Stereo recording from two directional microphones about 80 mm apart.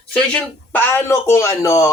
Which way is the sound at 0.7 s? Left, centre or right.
Left.